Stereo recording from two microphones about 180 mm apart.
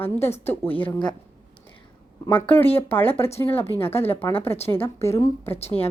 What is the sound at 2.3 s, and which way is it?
Speech, 10° left (ahead or behind).